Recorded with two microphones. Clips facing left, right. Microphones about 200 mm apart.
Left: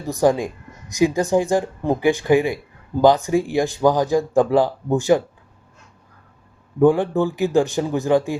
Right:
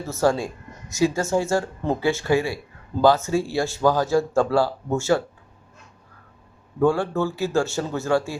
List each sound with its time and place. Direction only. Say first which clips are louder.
0.0 s speech: left 3 dB; 15° left (ahead or behind)
6.7 s speech: left 5 dB; 15° left (ahead or behind)